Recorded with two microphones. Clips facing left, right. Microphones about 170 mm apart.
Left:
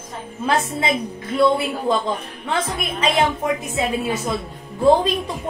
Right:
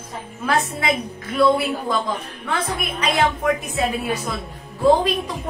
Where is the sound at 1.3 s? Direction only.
25° left (ahead or behind).